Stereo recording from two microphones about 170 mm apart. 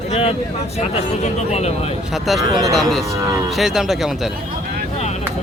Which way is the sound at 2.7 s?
Centre (ahead or behind).